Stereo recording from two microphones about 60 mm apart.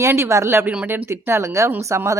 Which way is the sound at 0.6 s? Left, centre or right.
Right.